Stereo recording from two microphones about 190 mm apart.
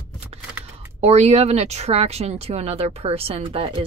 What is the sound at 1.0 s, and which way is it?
Speech, 35° right (ahead or behind).